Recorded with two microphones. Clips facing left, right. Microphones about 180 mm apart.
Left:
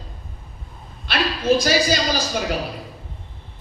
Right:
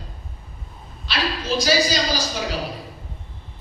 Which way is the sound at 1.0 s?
55° left (ahead or behind).